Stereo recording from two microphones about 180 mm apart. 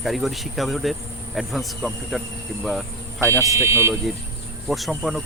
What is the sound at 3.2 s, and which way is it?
Speech, 15° right (ahead or behind).